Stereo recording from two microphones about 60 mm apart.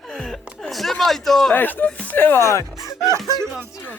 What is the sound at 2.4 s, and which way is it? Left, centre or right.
Speech, left.